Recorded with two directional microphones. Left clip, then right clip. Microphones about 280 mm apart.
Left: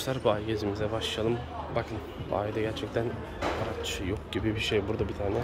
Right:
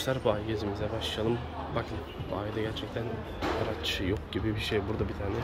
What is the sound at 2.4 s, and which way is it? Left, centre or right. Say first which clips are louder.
Speech: left 4 dB; centre.